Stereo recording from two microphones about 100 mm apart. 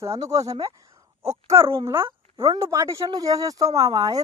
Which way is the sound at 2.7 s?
35° right (ahead or behind).